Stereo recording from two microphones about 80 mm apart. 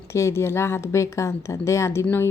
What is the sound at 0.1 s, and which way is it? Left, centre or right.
Speech, left.